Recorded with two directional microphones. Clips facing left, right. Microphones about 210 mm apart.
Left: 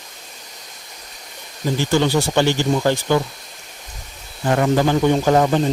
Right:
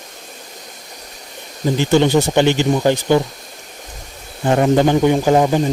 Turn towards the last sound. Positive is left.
turn(degrees=-10)  # may be behind; listen again after turning